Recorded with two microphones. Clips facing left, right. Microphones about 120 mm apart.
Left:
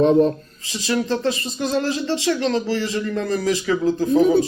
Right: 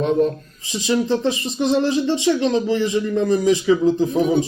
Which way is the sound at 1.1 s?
20° right (ahead or behind).